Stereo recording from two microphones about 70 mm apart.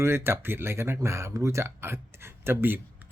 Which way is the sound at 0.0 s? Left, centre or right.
Right.